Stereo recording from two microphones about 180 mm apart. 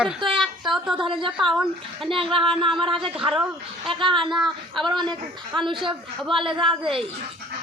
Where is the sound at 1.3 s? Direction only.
Centre (ahead or behind).